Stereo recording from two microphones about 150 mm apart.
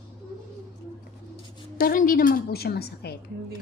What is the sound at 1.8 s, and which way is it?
A woman's voice, 70° left (ahead or behind).